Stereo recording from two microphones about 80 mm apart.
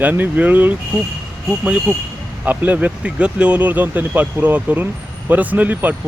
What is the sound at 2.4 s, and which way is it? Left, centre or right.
Speech, centre.